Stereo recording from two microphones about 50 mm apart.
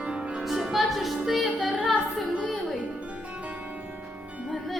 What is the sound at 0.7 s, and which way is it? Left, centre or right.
A woman's voice, centre.